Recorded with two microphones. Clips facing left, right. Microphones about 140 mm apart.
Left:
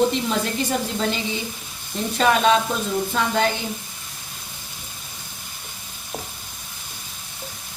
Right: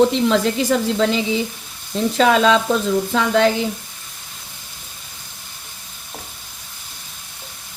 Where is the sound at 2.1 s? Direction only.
90° right.